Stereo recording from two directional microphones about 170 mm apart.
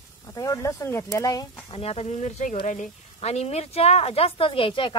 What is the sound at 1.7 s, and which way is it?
Speech, 35° left (ahead or behind).